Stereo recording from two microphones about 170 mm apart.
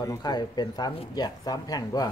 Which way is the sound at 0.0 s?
20° left (ahead or behind).